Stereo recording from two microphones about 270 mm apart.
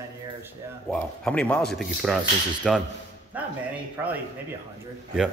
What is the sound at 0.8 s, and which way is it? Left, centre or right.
A man's voice, centre.